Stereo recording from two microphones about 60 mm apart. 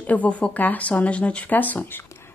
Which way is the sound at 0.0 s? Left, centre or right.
Left.